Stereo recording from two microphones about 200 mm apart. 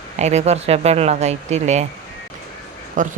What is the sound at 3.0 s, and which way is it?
Speech, 40° right (ahead or behind).